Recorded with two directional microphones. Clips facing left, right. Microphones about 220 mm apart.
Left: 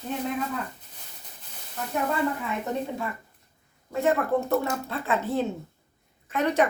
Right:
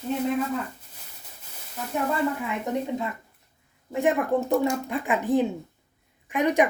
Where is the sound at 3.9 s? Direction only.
15° right (ahead or behind).